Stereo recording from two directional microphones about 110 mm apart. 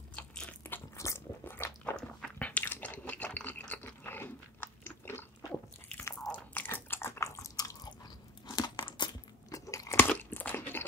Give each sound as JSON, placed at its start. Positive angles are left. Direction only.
{"t": 0.1, "sound": "biting", "side_deg": 10}
{"t": 2.0, "sound": "chewing", "side_deg": 10}
{"t": 6.1, "sound": "biting", "side_deg": 5}
{"t": 6.5, "sound": "biting", "side_deg": 20}
{"t": 9.7, "sound": "crunch", "side_deg": 25}